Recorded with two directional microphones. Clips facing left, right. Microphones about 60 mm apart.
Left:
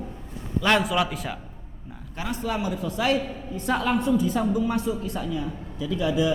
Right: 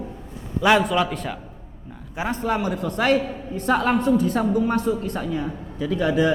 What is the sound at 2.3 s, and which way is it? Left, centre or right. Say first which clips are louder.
A man's voice: right 4 dB; right.